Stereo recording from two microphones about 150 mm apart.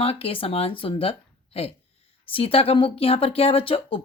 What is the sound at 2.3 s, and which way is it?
Speech, 40° left (ahead or behind).